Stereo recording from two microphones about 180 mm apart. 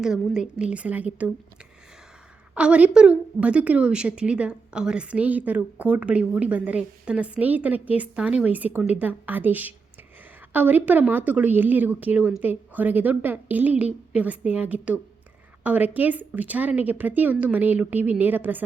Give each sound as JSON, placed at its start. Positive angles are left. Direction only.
{"t": 0.0, "sound": "a woman's voice", "side_deg": -5}
{"t": 2.6, "sound": "a woman's voice", "side_deg": -5}